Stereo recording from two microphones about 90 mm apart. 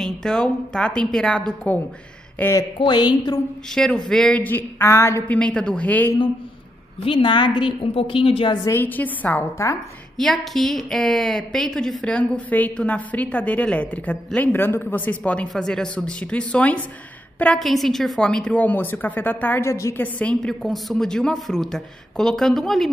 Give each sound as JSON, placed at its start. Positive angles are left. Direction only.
{"t": 0.0, "sound": "a woman's voice", "side_deg": 5}
{"t": 2.8, "sound": "a woman's voice", "side_deg": 55}
{"t": 3.7, "sound": "a woman's voice", "side_deg": 5}
{"t": 5.4, "sound": "a woman's voice", "side_deg": 10}
{"t": 7.1, "sound": "a woman's voice", "side_deg": 65}
{"t": 8.6, "sound": "a woman's voice", "side_deg": 20}
{"t": 9.6, "sound": "a woman's voice", "side_deg": 30}
{"t": 10.1, "sound": "a woman's voice", "side_deg": 5}
{"t": 17.6, "sound": "a woman's voice", "side_deg": 0}
{"t": 20.0, "sound": "a woman's voice", "side_deg": 15}
{"t": 20.3, "sound": "speech", "side_deg": 5}